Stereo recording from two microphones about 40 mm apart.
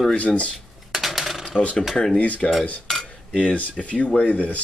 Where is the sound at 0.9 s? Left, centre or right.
Centre.